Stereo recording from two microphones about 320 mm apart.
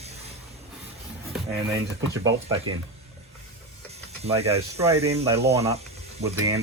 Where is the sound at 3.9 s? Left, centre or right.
Centre.